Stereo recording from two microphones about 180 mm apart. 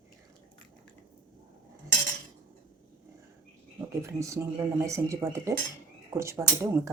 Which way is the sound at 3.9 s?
15° right (ahead or behind).